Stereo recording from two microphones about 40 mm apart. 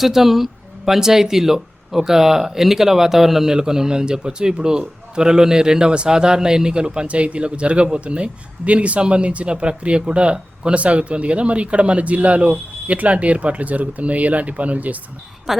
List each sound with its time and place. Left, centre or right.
0.0 s a man's voice: centre; by 15.0 s right
15.5 s a woman's voice: centre